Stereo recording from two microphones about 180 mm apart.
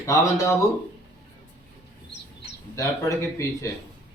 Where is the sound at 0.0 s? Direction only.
15° left (ahead or behind).